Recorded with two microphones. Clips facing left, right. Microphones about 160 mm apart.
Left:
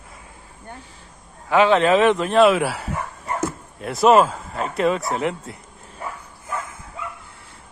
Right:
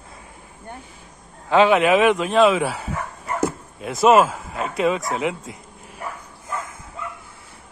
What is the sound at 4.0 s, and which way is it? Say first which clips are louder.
Speech: even; 5° right (ahead or behind).